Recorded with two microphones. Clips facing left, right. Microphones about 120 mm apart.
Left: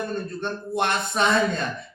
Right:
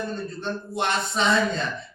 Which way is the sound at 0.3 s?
55° left (ahead or behind).